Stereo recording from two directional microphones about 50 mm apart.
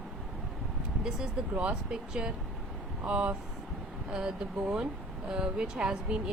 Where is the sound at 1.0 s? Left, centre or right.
Centre.